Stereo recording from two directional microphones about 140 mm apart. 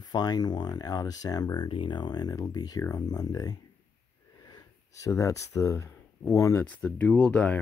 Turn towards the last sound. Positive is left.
turn(degrees=10)  # may be behind; listen again after turning